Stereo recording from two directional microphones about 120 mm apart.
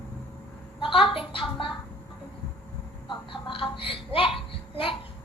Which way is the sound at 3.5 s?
50° left (ahead or behind).